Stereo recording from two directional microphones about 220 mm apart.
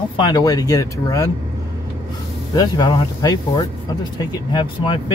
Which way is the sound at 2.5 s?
20° left (ahead or behind).